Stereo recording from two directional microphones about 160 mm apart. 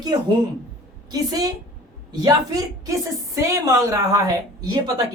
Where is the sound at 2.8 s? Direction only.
20° right (ahead or behind).